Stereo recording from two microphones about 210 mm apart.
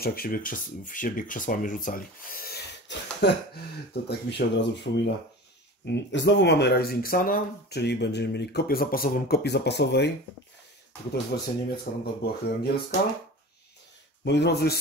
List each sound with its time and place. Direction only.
0.0 s speech: 45° left (ahead or behind)
11.3 s speech: 50° left (ahead or behind)
14.2 s speech: 55° left (ahead or behind)